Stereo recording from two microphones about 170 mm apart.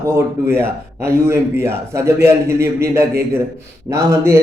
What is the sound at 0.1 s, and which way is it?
A man's voice, 15° right (ahead or behind).